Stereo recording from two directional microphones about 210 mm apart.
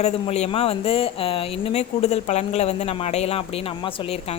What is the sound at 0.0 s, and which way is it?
Speech, 30° left (ahead or behind).